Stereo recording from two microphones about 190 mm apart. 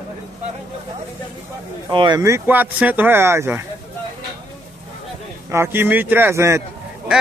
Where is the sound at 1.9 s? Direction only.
25° right (ahead or behind).